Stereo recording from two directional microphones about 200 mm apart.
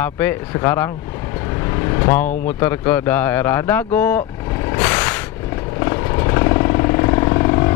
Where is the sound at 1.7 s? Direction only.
15° left (ahead or behind).